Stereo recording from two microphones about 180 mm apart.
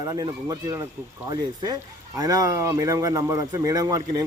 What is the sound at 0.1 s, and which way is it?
Speech, 20° right (ahead or behind).